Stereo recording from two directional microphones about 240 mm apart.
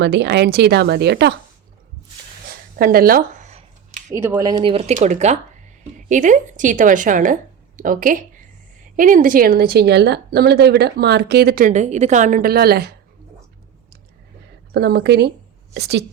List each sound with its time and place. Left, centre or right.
0.0 s a woman's voice: right
2.7 s a sound: right
4.1 s speech: centre; by 12.9 s right
14.7 s a woman's voice: right